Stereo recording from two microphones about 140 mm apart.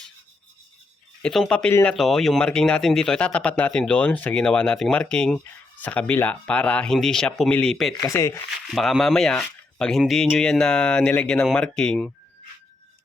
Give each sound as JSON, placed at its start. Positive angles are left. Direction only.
{"t": 1.2, "sound": "speech", "side_deg": 5}
{"t": 8.0, "sound": "speech", "side_deg": 20}
{"t": 8.6, "sound": "speech", "side_deg": 0}